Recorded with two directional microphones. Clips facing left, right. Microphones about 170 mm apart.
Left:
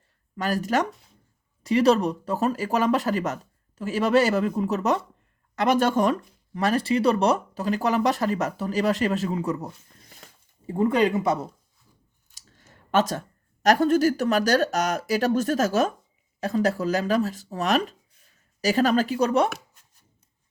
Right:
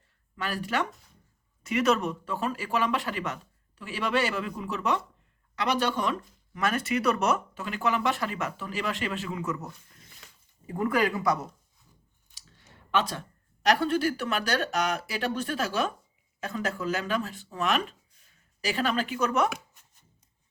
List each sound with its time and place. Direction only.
0.3 s speech: 40° left (ahead or behind)
10.7 s speech: 25° left (ahead or behind)
12.3 s speech: 45° left (ahead or behind)